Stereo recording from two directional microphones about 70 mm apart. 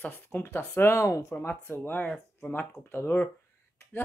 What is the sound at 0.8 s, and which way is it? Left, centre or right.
Speech, left.